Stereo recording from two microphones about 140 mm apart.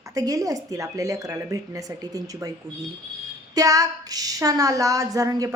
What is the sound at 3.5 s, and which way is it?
A woman's voice, 25° right (ahead or behind).